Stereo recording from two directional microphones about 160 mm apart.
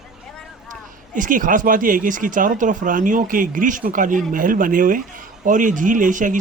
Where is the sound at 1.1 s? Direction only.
55° right (ahead or behind).